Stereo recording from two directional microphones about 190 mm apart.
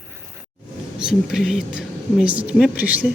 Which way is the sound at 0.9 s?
5° right (ahead or behind).